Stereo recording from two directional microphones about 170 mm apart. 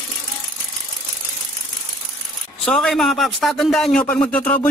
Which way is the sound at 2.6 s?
5° left (ahead or behind).